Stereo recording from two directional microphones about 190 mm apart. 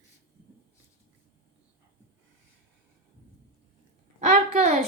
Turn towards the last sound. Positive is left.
turn(degrees=-35)  # may be behind; listen again after turning